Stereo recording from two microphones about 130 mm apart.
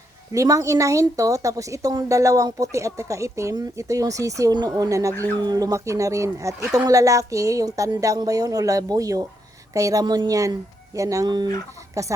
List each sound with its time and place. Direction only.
0.3 s a woman's voice: 25° right (ahead or behind)